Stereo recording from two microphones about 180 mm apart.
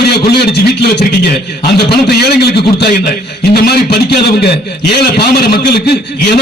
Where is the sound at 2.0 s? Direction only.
65° left (ahead or behind).